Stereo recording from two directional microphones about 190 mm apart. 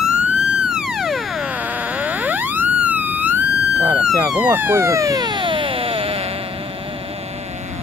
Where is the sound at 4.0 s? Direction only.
5° right (ahead or behind); by 6.2 s 30° right (ahead or behind).